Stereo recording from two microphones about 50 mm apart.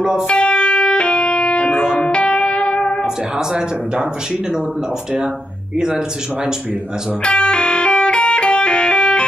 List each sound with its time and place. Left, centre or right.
0.3 s music: left
3.3 s speech: centre
5.8 s speech: centre
7.2 s music: left